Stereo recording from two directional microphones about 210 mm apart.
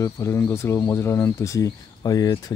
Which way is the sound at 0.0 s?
15° left (ahead or behind).